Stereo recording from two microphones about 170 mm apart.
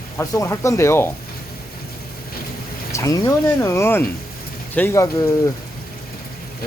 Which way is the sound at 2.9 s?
20° left (ahead or behind).